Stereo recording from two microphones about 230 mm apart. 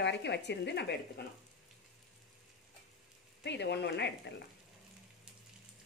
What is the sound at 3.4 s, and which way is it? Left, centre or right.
Speech, left.